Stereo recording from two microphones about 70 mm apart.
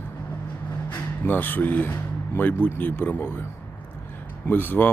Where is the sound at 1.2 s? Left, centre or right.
Left.